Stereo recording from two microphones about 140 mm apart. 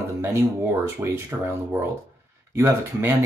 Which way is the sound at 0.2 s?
20° right (ahead or behind).